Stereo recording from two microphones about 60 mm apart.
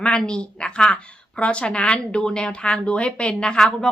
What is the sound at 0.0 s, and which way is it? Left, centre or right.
A woman's voice, centre.